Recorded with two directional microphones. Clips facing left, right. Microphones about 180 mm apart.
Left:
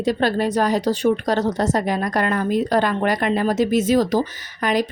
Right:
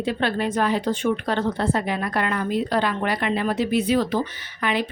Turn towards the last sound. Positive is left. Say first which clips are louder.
# left 4 dB
turn(degrees=40)  # may be behind; listen again after turning